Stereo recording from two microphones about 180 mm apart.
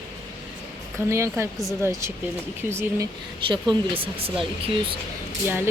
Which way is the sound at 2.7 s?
15° right (ahead or behind).